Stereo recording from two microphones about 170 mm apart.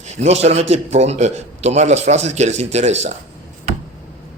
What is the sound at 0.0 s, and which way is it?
A man's voice, 40° right (ahead or behind).